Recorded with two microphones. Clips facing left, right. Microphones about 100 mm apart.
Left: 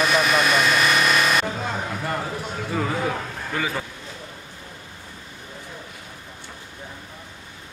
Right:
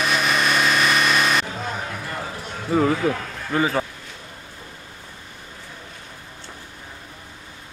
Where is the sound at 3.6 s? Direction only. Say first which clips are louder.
Right 6 dB; 35° right (ahead or behind).